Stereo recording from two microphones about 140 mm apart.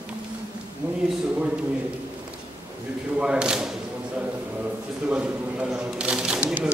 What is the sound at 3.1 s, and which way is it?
Speech, 5° right (ahead or behind).